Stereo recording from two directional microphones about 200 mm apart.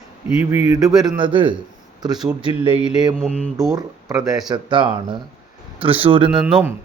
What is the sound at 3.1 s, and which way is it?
Mantra, centre (ahead or behind).